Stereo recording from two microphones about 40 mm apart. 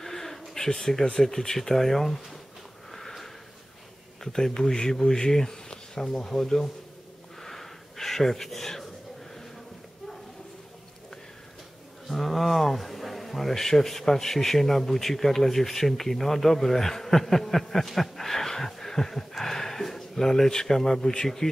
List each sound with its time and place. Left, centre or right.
0.0 s a sound: centre
1.1 s speech: centre
2.9 s sniff: centre
4.2 s speech: centre
7.4 s a sound: centre
12.1 s speech: centre